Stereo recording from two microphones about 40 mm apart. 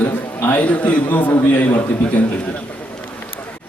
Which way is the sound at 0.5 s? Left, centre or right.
Left.